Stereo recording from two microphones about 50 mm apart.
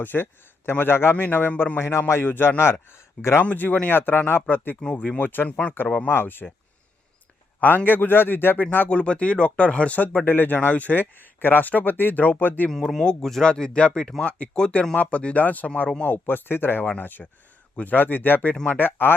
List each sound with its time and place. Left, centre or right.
0.0 s a man's voice: left
1.7 s a man's voice: left
2.2 s a man's voice: left
3.4 s speech: left
5.5 s speech: left
5.7 s a man's voice: left
7.9 s a man's voice: left
8.9 s speech: left
12.7 s speech: centre; by 15.9 s left
16.0 s a man's voice: left
18.5 s speech: left
18.8 s speech: left